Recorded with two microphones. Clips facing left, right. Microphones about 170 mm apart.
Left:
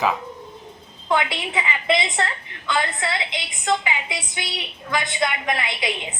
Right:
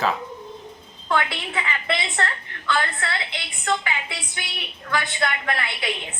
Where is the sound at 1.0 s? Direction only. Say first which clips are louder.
Left 2 dB; 15° left (ahead or behind).